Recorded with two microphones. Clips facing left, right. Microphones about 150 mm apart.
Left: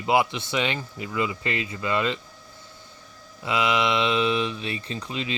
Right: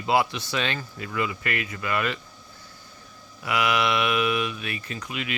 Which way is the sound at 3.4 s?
20° left (ahead or behind).